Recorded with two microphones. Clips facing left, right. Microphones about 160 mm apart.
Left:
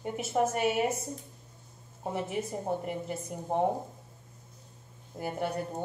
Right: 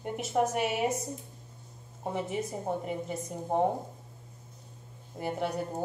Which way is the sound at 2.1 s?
Centre (ahead or behind).